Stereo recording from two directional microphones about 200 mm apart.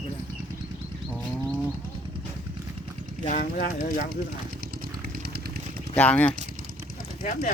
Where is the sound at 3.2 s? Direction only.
45° left (ahead or behind).